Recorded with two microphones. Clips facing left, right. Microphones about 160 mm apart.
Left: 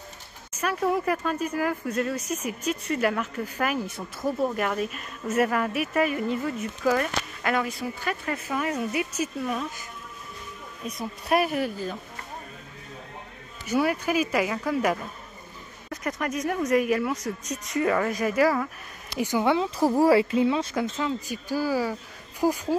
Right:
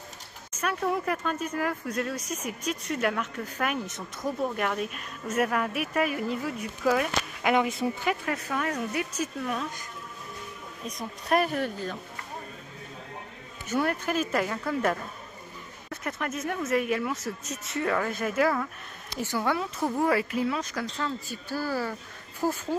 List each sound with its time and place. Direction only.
0.6 s speech: 5° left (ahead or behind)
7.4 s speech: 20° right (ahead or behind)
8.3 s speech: 5° left (ahead or behind)
10.9 s speech: 5° left (ahead or behind)
13.7 s speech: 5° left (ahead or behind)
15.9 s speech: 5° right (ahead or behind)
19.1 s speech: 15° left (ahead or behind)
19.8 s speech: 35° left (ahead or behind); by 22.8 s 10° left (ahead or behind)